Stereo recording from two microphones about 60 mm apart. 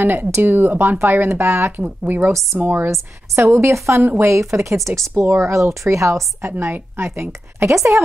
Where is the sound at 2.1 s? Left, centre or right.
Right.